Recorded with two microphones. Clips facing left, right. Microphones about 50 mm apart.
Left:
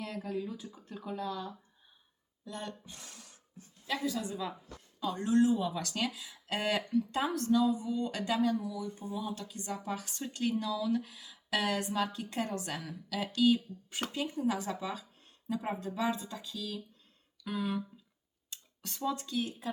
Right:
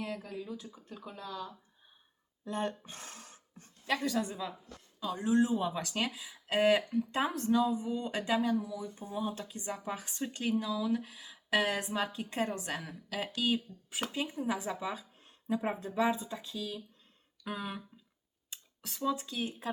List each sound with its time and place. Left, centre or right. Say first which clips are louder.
0.3 s speech: left 4 dB; centre
2.4 s a sound: right 7 dB; right
3.8 s a woman's voice: right 2 dB; right
4.4 s a woman's voice: left 1 dB; centre
13.9 s speech: right 1 dB; centre
14.2 s a woman's voice: left 2 dB; centre
18.5 s a sound: left 1 dB; centre
19.2 s a woman's voice: left 1 dB; centre